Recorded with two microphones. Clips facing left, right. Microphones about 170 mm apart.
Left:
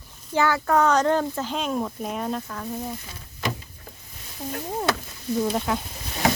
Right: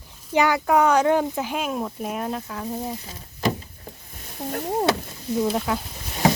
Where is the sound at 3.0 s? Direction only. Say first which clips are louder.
Right 5 dB; 35° right (ahead or behind).